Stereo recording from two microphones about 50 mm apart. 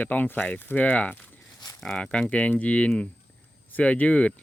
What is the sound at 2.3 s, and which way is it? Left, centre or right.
Speech, left.